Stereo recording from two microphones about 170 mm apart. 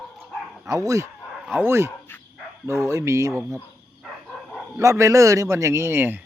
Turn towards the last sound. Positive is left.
turn(degrees=-10)  # may be behind; listen again after turning